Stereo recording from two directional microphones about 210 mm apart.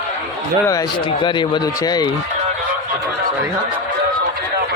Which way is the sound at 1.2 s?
20° left (ahead or behind).